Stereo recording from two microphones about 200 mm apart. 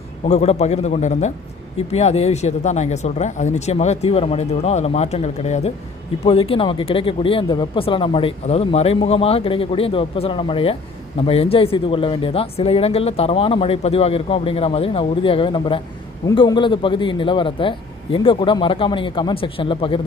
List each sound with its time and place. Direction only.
0.3 s speech: 35° left (ahead or behind)